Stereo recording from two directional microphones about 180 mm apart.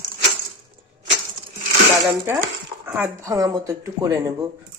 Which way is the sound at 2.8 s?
10° right (ahead or behind).